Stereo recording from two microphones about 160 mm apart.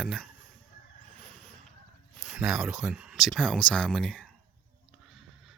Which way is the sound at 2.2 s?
5° right (ahead or behind).